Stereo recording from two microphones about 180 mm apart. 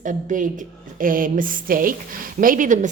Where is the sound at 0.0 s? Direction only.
45° right (ahead or behind).